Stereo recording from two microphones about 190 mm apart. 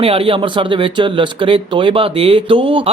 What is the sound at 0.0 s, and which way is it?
Speech, 30° right (ahead or behind).